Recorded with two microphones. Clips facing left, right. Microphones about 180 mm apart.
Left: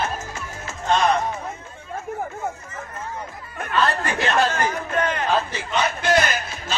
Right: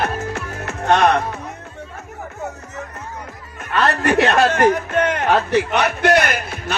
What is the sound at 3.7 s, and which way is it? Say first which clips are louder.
A man's voice: right 5 dB; 70° right (ahead or behind).